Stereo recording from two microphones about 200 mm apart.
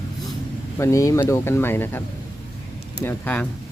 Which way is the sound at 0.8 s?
15° left (ahead or behind).